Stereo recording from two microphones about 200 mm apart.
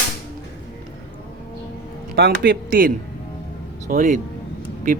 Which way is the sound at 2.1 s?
50° right (ahead or behind).